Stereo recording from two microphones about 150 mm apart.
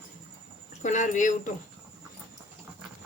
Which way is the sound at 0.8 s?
55° left (ahead or behind).